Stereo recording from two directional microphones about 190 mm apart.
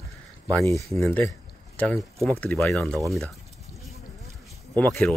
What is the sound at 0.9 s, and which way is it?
Speech, 5° left (ahead or behind).